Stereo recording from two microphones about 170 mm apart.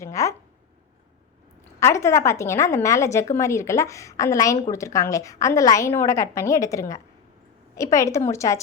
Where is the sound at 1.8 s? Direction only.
15° left (ahead or behind).